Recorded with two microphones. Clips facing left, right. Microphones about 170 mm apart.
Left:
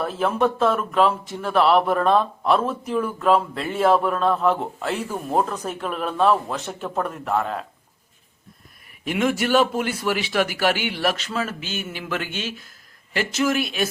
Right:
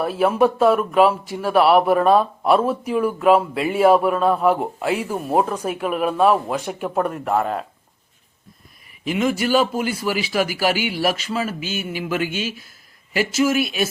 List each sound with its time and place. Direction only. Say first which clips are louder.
0.0 s speech: right 4 dB; 10° right (ahead or behind)
9.0 s a man's voice: right 1 dB; centre (ahead or behind)